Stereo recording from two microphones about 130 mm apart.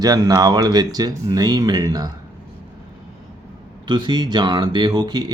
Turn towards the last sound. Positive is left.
turn(degrees=-35)  # may be behind; listen again after turning